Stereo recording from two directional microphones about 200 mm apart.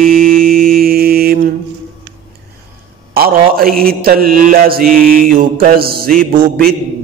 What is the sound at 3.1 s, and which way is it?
Mantra, 50° right (ahead or behind).